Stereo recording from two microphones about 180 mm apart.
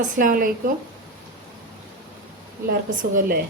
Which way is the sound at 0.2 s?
50° right (ahead or behind).